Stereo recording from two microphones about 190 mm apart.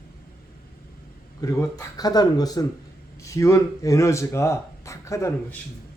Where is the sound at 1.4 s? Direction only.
15° left (ahead or behind).